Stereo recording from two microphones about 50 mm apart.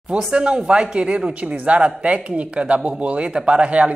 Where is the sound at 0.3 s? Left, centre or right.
Centre.